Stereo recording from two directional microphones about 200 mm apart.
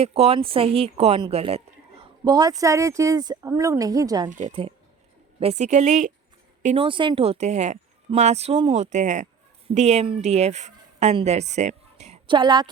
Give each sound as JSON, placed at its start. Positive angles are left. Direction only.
{"t": 0.0, "sound": "speech", "side_deg": -30}
{"t": 2.2, "sound": "speech", "side_deg": -20}
{"t": 4.3, "sound": "a woman's voice", "side_deg": -40}
{"t": 6.8, "sound": "a woman's voice", "side_deg": -25}